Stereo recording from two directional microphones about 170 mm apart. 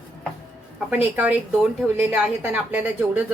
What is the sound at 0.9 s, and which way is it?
A woman's voice, 10° right (ahead or behind).